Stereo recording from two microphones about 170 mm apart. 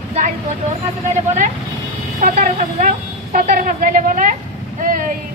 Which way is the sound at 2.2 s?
55° right (ahead or behind).